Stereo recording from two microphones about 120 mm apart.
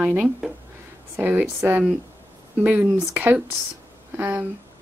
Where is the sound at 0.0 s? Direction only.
5° right (ahead or behind).